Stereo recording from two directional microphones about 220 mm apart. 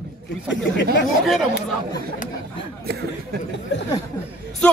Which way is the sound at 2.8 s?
45° right (ahead or behind).